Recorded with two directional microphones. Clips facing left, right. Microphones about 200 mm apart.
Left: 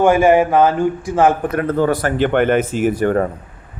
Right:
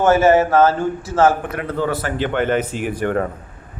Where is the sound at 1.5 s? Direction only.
45° left (ahead or behind).